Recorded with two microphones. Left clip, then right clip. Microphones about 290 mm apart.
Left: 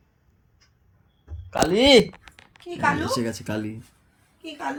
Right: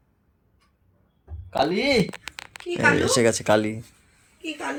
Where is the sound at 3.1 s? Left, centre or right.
Centre.